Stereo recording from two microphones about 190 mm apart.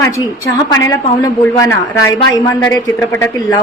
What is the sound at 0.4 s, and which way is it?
A woman's voice, 15° left (ahead or behind).